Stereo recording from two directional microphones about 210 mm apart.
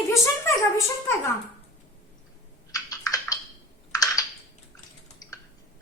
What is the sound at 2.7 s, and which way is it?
Typing, 15° left (ahead or behind).